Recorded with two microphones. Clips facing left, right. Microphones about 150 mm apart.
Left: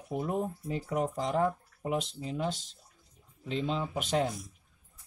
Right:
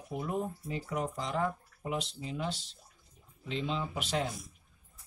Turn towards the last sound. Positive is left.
turn(degrees=45)  # may be behind; listen again after turning